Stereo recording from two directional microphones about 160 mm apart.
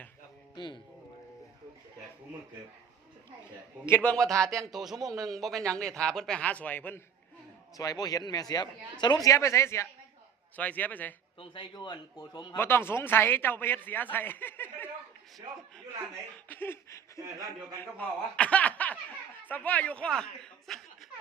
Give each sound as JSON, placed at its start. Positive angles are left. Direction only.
{"t": 0.5, "sound": "a man's voice", "side_deg": 30}
{"t": 3.8, "sound": "speech", "side_deg": 15}
{"t": 4.4, "sound": "speech", "side_deg": -20}
{"t": 4.7, "sound": "a man's voice", "side_deg": 0}
{"t": 4.9, "sound": "speech", "side_deg": -20}
{"t": 5.2, "sound": "a man's voice", "side_deg": 0}
{"t": 7.8, "sound": "a man's voice", "side_deg": 25}
{"t": 11.3, "sound": "a man's voice", "side_deg": 30}
{"t": 12.5, "sound": "speech", "side_deg": 15}
{"t": 16.5, "sound": "speech", "side_deg": 15}